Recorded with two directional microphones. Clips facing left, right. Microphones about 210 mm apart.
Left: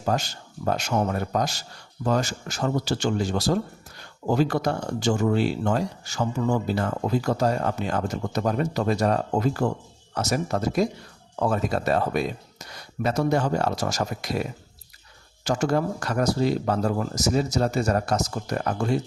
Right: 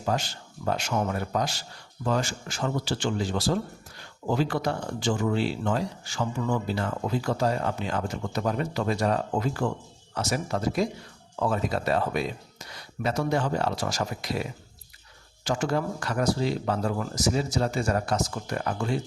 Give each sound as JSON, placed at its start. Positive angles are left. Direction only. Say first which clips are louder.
{"t": 0.0, "sound": "speech", "louder": "left 2 dB", "side_deg": 45}
{"t": 15.4, "sound": "speech", "louder": "left 3 dB", "side_deg": 40}